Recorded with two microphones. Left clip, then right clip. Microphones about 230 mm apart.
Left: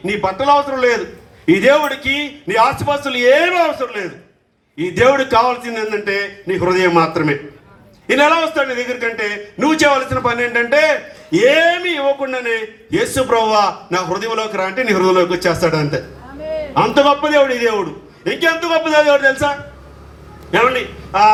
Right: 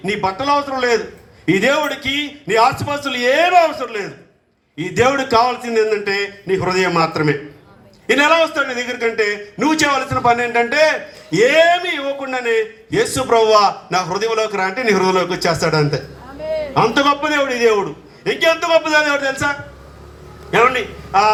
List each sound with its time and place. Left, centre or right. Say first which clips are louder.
0.0 s a man's voice: left 2 dB; right
16.4 s a sound: right 1 dB; right
16.7 s a man's voice: left 3 dB; right
21.1 s a man's voice: left 3 dB; right